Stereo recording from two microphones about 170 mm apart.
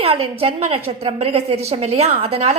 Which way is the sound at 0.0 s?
35° right (ahead or behind).